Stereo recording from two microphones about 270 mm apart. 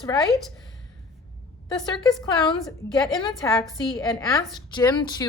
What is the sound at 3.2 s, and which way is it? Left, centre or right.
A woman's voice, centre.